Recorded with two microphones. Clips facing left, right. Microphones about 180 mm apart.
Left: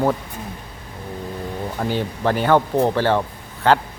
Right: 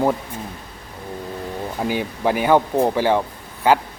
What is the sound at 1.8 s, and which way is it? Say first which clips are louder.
Speech: even; 10° right (ahead or behind).